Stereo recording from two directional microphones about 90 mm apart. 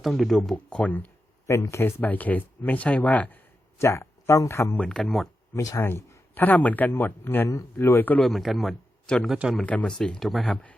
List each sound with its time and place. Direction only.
0.0 s speech: centre (ahead or behind); by 1.1 s 15° left (ahead or behind)
1.5 s speech: 30° left (ahead or behind)
2.0 s speech: 20° left (ahead or behind)
3.8 s speech: 30° left (ahead or behind)
4.8 s speech: 5° left (ahead or behind)
5.5 s speech: 35° left (ahead or behind)
8.2 s a man's voice: centre (ahead or behind)
9.3 s speech: 5° right (ahead or behind)
9.6 s speech: 10° left (ahead or behind)